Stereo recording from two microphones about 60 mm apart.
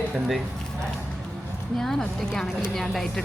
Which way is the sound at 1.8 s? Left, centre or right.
Centre.